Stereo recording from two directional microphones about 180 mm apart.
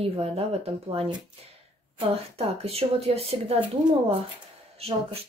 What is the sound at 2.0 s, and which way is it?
Speech, 35° right (ahead or behind).